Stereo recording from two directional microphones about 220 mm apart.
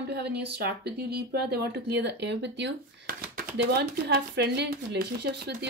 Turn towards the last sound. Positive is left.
turn(degrees=-50)  # may be behind; listen again after turning